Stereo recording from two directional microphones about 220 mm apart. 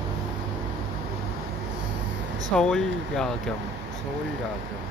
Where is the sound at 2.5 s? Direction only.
Centre (ahead or behind).